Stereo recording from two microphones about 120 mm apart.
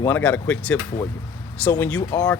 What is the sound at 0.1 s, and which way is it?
Speech, 15° left (ahead or behind).